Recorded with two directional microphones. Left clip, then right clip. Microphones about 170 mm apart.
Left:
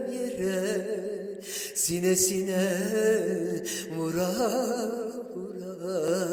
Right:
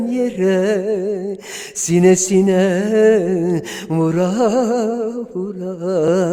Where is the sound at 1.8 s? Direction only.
40° right (ahead or behind).